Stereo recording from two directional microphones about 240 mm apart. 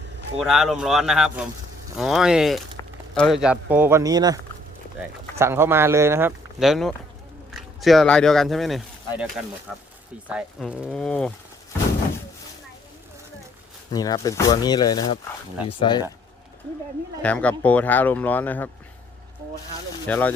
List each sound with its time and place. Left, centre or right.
0.3 s speech: centre
2.8 s a sound: centre
3.2 s speech: centre
5.4 s speech: centre
13.9 s speech: centre
17.2 s speech: centre
20.1 s speech: centre